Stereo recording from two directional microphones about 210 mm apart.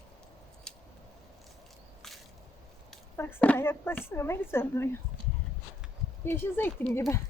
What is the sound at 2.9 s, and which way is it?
Speech, 10° left (ahead or behind).